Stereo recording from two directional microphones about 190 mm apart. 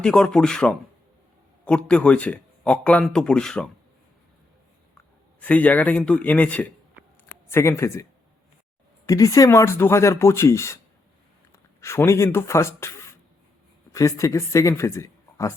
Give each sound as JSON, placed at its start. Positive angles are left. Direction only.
{"t": 0.0, "sound": "speech", "side_deg": 5}
{"t": 5.4, "sound": "speech", "side_deg": 10}
{"t": 9.0, "sound": "speech", "side_deg": 15}
{"t": 11.8, "sound": "speech", "side_deg": 15}